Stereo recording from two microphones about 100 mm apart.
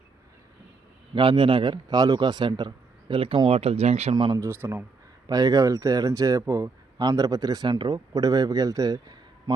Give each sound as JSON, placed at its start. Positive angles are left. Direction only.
{"t": 1.1, "sound": "a man's voice", "side_deg": -60}
{"t": 3.5, "sound": "speech", "side_deg": -90}
{"t": 4.4, "sound": "speech", "side_deg": -25}
{"t": 5.2, "sound": "speech", "side_deg": -35}
{"t": 7.0, "sound": "speech", "side_deg": -40}